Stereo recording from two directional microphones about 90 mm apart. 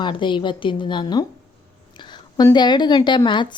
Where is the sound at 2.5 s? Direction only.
55° left (ahead or behind).